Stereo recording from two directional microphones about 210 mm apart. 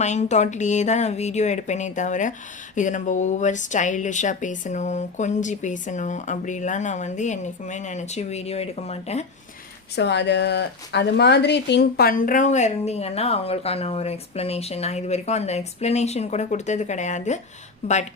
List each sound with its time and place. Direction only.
0.0 s speech: 35° left (ahead or behind)
9.9 s speech: 55° left (ahead or behind); by 18.0 s 30° left (ahead or behind)